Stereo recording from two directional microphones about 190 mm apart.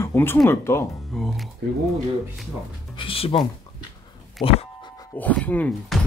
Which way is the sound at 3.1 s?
30° left (ahead or behind).